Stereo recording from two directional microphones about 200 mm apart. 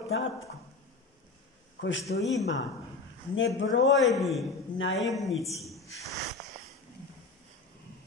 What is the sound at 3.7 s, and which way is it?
Speech, 65° left (ahead or behind).